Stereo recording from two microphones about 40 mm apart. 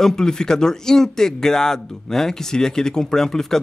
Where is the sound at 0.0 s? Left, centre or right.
Centre.